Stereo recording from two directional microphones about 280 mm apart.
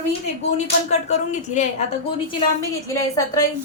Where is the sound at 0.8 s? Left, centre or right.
Left.